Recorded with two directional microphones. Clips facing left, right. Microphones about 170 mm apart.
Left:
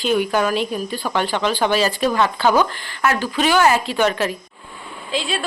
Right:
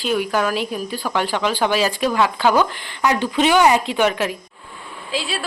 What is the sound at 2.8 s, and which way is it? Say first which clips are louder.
A woman's voice: right 1 dB; 20° right (ahead or behind).